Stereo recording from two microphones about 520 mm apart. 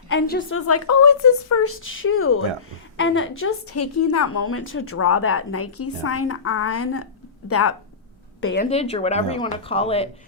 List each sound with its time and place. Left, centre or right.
0.1 s a woman's voice: centre
8.7 s speech: centre